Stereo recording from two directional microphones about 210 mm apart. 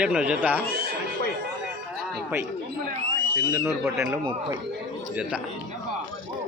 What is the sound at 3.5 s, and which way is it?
Speech, 15° right (ahead or behind).